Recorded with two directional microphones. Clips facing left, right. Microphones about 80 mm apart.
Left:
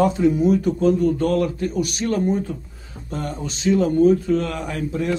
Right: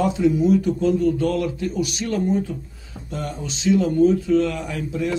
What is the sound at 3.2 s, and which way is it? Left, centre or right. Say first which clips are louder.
A man's voice: left 1 dB; left.